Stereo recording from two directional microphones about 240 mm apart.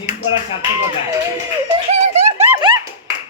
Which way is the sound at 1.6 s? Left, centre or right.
Right.